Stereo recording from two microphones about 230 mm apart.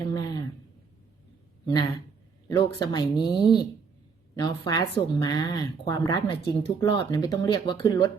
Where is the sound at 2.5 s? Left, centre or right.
Centre.